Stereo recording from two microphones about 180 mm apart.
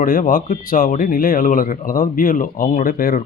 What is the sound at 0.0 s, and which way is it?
Speech, 50° left (ahead or behind).